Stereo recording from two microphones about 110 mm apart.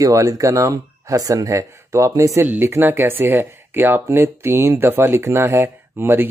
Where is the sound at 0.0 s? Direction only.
30° right (ahead or behind).